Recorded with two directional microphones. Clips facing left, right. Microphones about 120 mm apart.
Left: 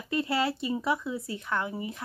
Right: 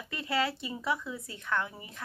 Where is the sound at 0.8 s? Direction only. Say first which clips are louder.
Left 4 dB; 10° left (ahead or behind).